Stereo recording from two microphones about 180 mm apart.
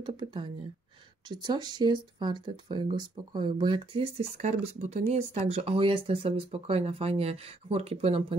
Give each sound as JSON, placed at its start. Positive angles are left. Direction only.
{"t": 0.0, "sound": "speech", "side_deg": -25}